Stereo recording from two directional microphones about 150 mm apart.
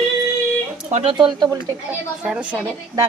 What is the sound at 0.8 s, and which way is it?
Speech, 50° right (ahead or behind).